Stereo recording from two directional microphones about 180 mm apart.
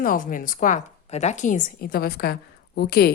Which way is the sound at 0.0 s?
50° left (ahead or behind).